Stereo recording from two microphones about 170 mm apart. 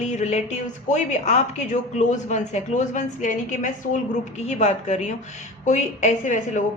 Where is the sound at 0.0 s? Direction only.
40° left (ahead or behind).